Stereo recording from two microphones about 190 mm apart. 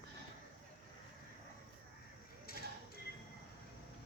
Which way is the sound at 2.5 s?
50° left (ahead or behind).